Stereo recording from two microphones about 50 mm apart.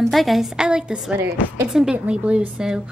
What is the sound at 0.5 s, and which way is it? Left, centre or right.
Speech, centre.